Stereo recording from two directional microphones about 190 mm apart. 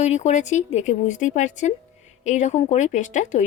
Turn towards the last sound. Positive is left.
turn(degrees=40)  # may be behind; listen again after turning